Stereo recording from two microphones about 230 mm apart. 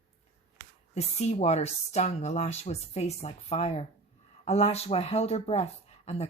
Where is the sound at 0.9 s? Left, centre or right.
Left.